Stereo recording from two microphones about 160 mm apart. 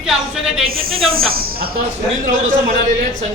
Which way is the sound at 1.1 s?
70° right (ahead or behind).